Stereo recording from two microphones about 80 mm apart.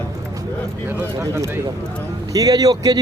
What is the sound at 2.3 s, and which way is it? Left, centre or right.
Speech, right.